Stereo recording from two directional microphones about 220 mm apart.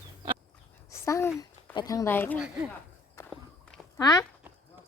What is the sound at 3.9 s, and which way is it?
Speech, 15° left (ahead or behind).